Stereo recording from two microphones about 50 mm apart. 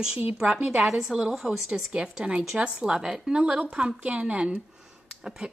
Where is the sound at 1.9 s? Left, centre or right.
Centre.